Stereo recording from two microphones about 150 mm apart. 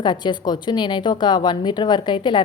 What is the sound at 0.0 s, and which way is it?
A woman's voice, 30° left (ahead or behind).